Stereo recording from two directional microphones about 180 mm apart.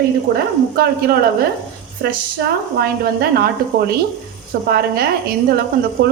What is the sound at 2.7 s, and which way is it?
Speech, 60° right (ahead or behind).